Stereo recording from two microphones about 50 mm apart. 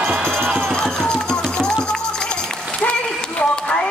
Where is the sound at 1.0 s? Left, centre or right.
Centre.